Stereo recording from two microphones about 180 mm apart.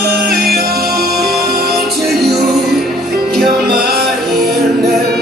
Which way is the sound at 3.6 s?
60° right (ahead or behind).